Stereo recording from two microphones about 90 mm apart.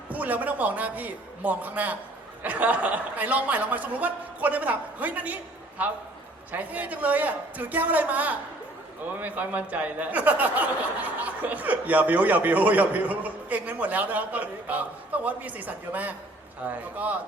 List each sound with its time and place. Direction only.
0.1 s speech: 15° right (ahead or behind)